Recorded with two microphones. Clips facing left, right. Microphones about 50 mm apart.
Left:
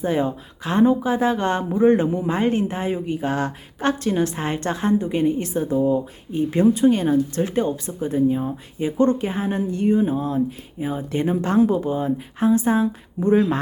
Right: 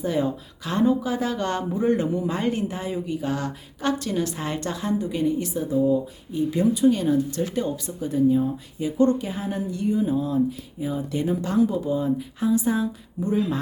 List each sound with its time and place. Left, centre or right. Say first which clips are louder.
0.0 s speech: left 2 dB; left